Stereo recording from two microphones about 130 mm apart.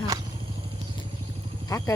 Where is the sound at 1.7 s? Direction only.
25° left (ahead or behind).